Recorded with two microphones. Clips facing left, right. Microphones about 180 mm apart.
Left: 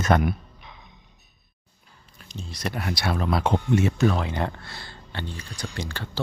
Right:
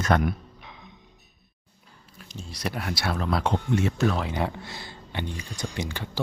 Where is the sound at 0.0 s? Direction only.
15° left (ahead or behind).